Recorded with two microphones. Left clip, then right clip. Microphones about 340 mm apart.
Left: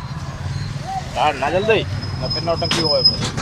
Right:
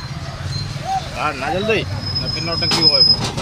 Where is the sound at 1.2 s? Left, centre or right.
Left.